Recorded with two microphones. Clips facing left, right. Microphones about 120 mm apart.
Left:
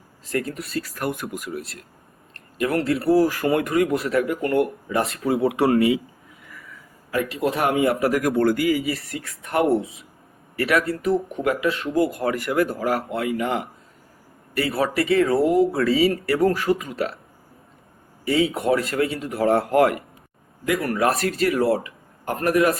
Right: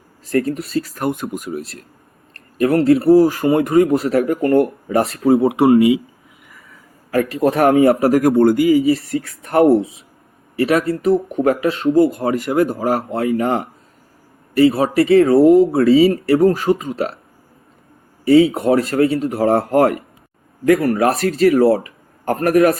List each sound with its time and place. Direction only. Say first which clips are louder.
0.3 s speech: right 8 dB; 35° right (ahead or behind)
2.6 s speech: right 9 dB; 35° right (ahead or behind)
5.4 s speech: right 4 dB; 25° right (ahead or behind)
7.1 s speech: right 7 dB; 45° right (ahead or behind)
10.6 s speech: right 5 dB; 30° right (ahead or behind)
14.5 s speech: right 9 dB; 25° right (ahead or behind)
18.3 s speech: right 8 dB; 35° right (ahead or behind)
22.3 s a man's voice: right 6 dB; 45° right (ahead or behind)